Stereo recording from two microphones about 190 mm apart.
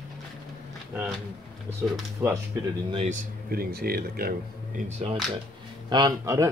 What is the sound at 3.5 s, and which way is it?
Speech, 55° right (ahead or behind).